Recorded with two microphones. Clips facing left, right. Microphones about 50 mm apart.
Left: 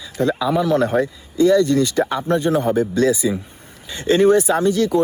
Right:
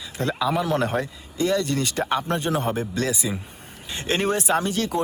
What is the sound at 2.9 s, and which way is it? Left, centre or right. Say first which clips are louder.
Speech: left 9 dB; left.